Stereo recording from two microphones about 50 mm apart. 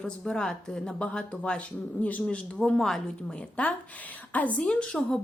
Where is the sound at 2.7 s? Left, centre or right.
Centre.